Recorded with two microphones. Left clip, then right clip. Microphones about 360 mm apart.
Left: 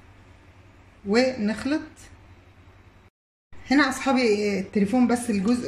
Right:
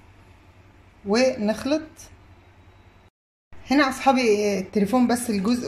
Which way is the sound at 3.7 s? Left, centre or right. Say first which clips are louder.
Right 2 dB; centre.